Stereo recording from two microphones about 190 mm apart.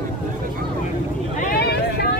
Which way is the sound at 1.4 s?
55° left (ahead or behind).